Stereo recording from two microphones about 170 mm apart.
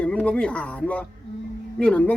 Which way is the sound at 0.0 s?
5° left (ahead or behind).